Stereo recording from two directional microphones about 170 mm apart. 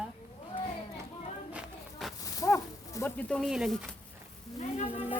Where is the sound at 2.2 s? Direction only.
20° left (ahead or behind).